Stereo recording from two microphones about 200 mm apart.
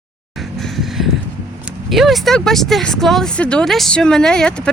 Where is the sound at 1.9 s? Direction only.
Centre (ahead or behind).